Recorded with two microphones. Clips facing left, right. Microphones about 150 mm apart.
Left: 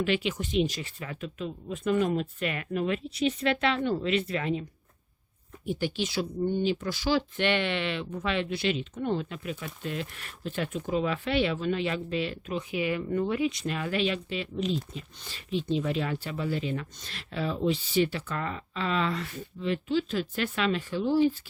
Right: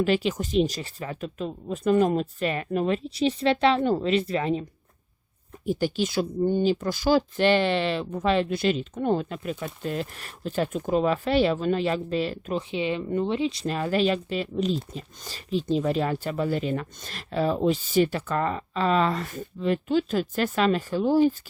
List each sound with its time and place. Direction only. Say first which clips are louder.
0.0 s speech: right 4 dB; 40° right (ahead or behind)
5.6 s speech: right 5 dB; 45° right (ahead or behind)
12.7 s speech: right 1 dB; 25° right (ahead or behind); by 21.3 s 45° right (ahead or behind)